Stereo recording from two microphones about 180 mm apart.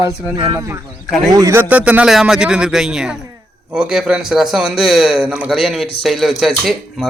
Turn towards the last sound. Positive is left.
turn(degrees=0)  # may be behind; listen again after turning